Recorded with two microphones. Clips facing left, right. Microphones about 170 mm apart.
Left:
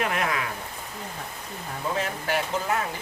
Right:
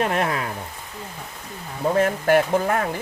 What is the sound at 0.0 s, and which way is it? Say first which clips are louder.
Speech: right 4 dB; 40° right (ahead or behind).